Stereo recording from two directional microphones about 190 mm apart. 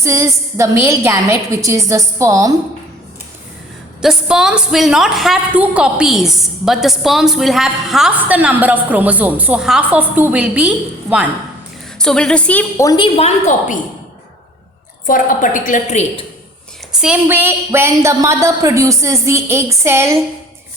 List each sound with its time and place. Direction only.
0.0 s a woman's voice: 15° right (ahead or behind)
4.0 s a woman's voice: 5° right (ahead or behind)
11.9 s a woman's voice: 5° left (ahead or behind)
13.1 s a woman's voice: 35° left (ahead or behind)
15.0 s a woman's voice: 45° left (ahead or behind)
16.9 s a woman's voice: 5° right (ahead or behind)